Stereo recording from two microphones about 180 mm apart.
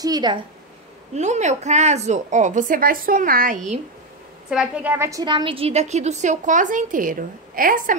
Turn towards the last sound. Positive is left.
turn(degrees=-50)  # may be behind; listen again after turning